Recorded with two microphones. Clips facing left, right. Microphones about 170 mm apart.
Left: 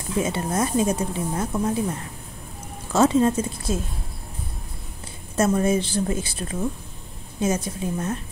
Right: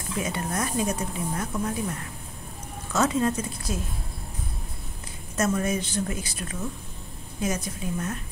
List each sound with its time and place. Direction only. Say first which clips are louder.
0.2 s speech: left 5 dB; 25° left (ahead or behind)
2.9 s speech: left 6 dB; 30° left (ahead or behind)
5.3 s speech: left 5 dB; 30° left (ahead or behind)